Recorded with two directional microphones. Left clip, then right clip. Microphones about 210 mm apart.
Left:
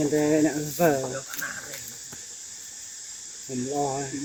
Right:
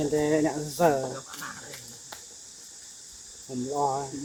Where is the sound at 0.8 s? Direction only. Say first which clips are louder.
Even; 15° left (ahead or behind).